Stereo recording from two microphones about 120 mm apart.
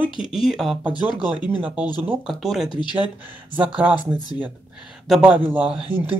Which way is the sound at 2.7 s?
40° left (ahead or behind).